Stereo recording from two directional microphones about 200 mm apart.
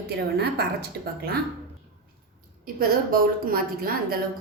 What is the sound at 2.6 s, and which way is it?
A woman's voice, 45° right (ahead or behind).